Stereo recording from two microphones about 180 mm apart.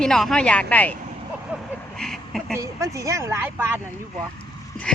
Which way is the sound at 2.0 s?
Centre (ahead or behind).